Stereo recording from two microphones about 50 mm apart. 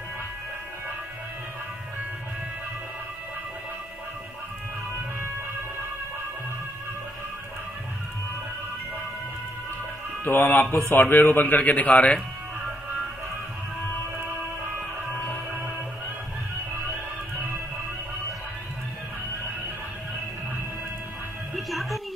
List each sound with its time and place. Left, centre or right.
10.2 s speech: left
10.7 s speech: left
11.0 s speech: left
21.5 s music: centre